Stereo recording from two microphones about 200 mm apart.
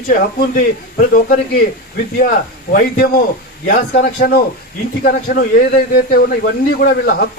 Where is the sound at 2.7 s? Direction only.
45° left (ahead or behind).